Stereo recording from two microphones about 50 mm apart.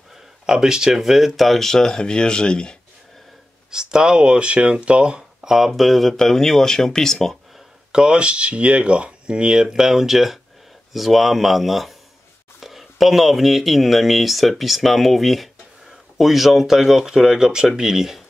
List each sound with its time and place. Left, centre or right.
0.5 s speech: centre
3.7 s speech: centre
5.5 s speech: centre
7.9 s speech: centre